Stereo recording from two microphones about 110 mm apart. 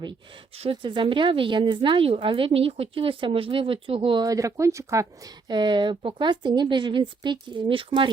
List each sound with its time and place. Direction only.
0.7 s a woman's voice: 45° right (ahead or behind)
4.2 s speech: 30° right (ahead or behind)
5.5 s a woman's voice: 45° right (ahead or behind)